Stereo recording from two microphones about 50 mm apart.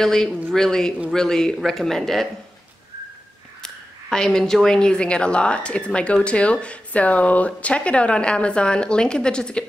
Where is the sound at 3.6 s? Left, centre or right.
Centre.